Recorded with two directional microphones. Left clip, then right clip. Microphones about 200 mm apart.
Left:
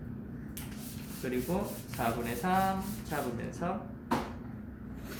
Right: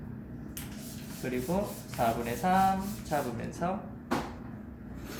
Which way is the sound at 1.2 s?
20° right (ahead or behind).